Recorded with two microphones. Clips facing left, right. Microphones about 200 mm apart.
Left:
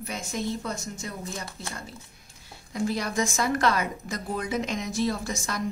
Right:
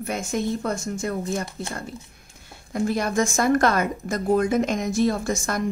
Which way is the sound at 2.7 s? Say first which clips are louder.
Right 5 dB; 50° right (ahead or behind).